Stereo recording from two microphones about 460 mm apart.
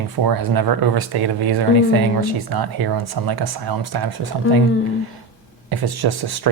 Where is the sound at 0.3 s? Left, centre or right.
Right.